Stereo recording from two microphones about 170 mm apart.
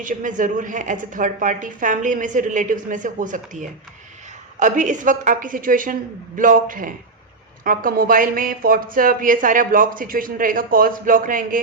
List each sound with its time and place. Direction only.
0.0 s a woman's voice: 50° right (ahead or behind)